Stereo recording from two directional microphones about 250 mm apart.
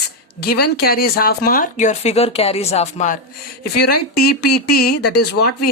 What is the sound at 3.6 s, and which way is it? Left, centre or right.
Speech, left.